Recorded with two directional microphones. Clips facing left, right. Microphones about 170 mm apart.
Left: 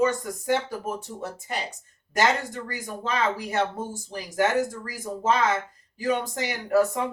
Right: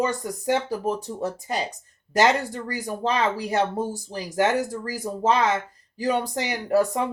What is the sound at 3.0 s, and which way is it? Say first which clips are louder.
Speech: right 3 dB; 35° right (ahead or behind).